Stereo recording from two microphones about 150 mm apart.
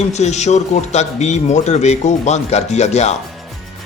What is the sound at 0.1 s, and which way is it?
A man's voice, 50° left (ahead or behind).